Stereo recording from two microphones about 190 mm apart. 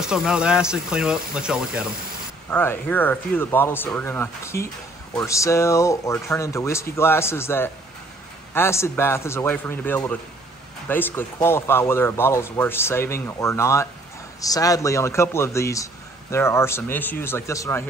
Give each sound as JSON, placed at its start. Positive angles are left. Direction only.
{"t": 0.0, "sound": "speech", "side_deg": -5}
{"t": 2.5, "sound": "a man's voice", "side_deg": 10}